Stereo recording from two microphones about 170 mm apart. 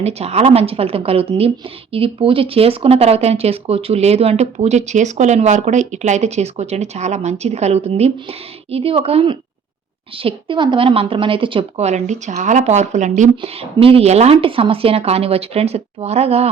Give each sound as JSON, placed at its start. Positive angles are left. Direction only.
{"t": 0.0, "sound": "a woman's voice", "side_deg": -35}
{"t": 13.3, "sound": "a woman's voice", "side_deg": -35}